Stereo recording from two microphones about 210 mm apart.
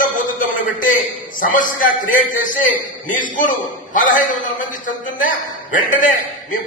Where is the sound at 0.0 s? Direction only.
40° left (ahead or behind).